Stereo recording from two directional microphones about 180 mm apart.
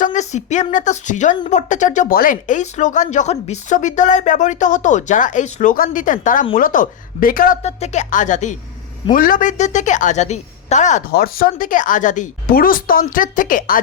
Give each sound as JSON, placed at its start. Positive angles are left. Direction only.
{"t": 0.0, "sound": "speech", "side_deg": 40}
{"t": 7.6, "sound": "speech", "side_deg": 40}
{"t": 11.1, "sound": "speech", "side_deg": 55}